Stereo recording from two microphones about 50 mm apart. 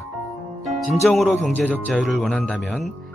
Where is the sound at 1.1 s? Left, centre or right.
Centre.